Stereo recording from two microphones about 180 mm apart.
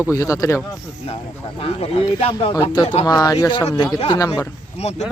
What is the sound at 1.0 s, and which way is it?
Speech, 35° left (ahead or behind).